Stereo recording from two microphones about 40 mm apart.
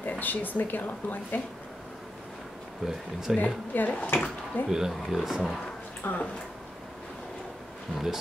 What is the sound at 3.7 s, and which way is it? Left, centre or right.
Speech, left.